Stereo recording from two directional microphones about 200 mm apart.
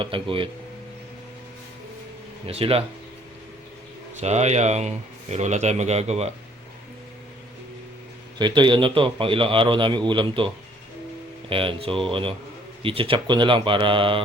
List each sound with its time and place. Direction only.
0.0 s speech: 25° right (ahead or behind)
2.5 s speech: 30° right (ahead or behind)
4.2 s speech: 35° right (ahead or behind)
8.4 s speech: 20° right (ahead or behind)